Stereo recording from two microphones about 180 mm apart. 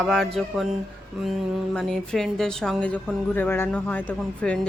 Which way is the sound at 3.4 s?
10° left (ahead or behind).